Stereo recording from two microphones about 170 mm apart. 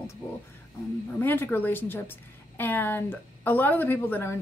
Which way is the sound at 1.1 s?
10° left (ahead or behind).